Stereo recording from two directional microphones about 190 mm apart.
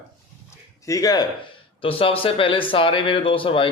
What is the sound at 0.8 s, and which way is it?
Speech, 15° left (ahead or behind).